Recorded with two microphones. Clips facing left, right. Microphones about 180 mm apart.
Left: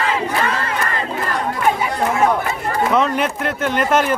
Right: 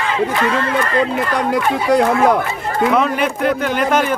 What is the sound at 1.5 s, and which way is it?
Speech, 90° right.